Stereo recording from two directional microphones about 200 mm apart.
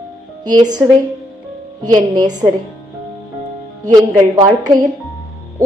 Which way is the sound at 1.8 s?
20° right (ahead or behind).